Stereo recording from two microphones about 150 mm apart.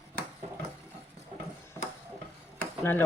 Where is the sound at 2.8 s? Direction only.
15° left (ahead or behind).